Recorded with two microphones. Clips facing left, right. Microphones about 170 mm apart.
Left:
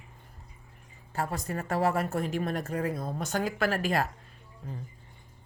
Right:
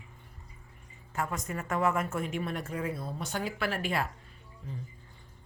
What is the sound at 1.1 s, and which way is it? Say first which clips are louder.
Speech: left 2 dB; 35° left (ahead or behind).